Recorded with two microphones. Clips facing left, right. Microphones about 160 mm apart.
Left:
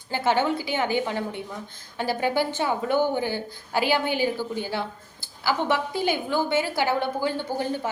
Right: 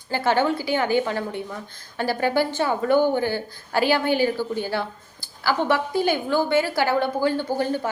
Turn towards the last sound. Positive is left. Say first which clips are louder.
# right 3 dB
turn(degrees=15)  # may be behind; listen again after turning